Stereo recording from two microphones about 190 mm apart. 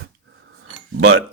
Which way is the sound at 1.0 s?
90° right.